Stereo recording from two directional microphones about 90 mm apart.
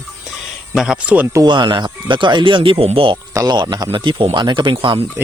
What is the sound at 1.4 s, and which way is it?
Speech, 60° right (ahead or behind).